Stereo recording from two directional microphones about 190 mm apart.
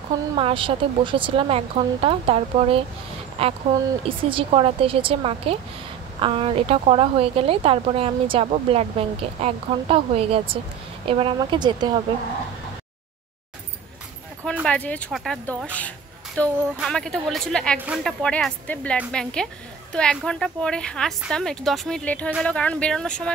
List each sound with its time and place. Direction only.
0.4 s a woman's voice: 30° right (ahead or behind)
14.7 s a woman's voice: 5° left (ahead or behind)
17.7 s speech: 5° right (ahead or behind)
18.0 s a woman's voice: 5° left (ahead or behind)